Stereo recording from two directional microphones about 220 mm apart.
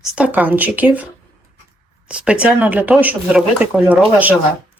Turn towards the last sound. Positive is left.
turn(degrees=-5)  # may be behind; listen again after turning